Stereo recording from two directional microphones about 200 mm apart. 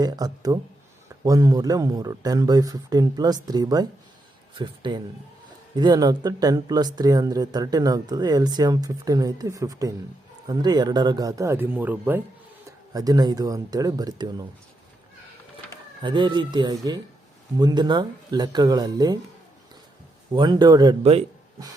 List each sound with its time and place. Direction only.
0.0 s speech: 20° right (ahead or behind)
16.0 s speech: 20° right (ahead or behind)
20.3 s a man's voice: 20° right (ahead or behind)